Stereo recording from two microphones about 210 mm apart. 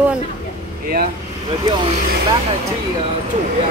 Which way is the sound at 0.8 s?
45° right (ahead or behind).